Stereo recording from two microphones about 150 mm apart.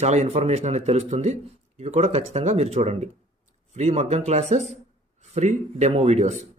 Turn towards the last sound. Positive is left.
turn(degrees=-50)  # may be behind; listen again after turning